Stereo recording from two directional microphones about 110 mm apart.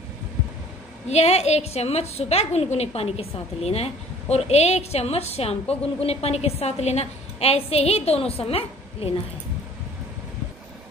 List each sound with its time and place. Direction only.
1.0 s a woman's voice: 75° left (ahead or behind)